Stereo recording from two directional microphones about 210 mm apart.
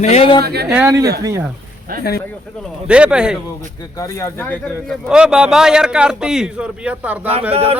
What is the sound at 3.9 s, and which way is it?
Speech, 15° left (ahead or behind).